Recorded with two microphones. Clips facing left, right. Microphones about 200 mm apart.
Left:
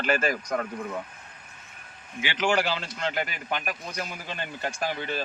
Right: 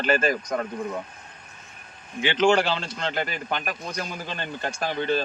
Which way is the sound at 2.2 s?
25° right (ahead or behind).